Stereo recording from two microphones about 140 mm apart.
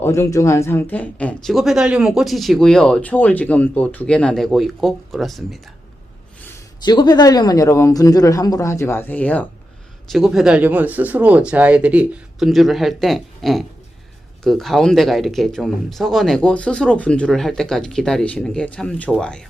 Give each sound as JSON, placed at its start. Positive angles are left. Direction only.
{"t": 0.0, "sound": "speech", "side_deg": 20}
{"t": 6.8, "sound": "speech", "side_deg": 30}
{"t": 10.1, "sound": "speech", "side_deg": 0}